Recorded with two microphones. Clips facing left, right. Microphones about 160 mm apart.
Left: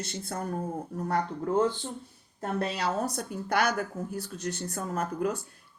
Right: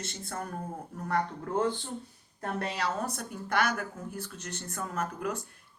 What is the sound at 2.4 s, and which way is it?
A woman's voice, 35° left (ahead or behind).